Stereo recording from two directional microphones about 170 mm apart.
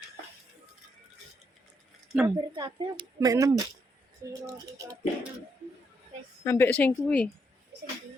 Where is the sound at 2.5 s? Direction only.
25° right (ahead or behind).